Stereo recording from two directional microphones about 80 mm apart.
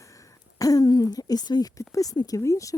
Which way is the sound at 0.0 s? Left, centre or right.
Left.